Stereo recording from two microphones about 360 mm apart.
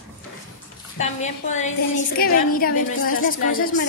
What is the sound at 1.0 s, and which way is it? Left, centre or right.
A woman's voice, centre.